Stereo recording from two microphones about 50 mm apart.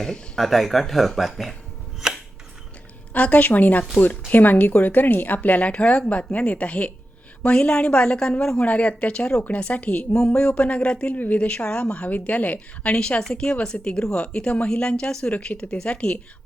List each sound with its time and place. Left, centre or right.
0.3 s speech: centre
3.1 s speech: left
8.6 s speech: left
10.2 s speech: centre
11.1 s speech: left